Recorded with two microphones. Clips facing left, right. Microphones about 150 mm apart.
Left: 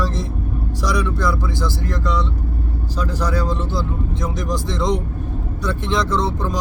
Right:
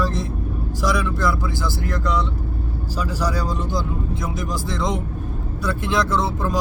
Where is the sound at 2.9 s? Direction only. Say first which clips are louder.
Left 2 dB; 10° right (ahead or behind).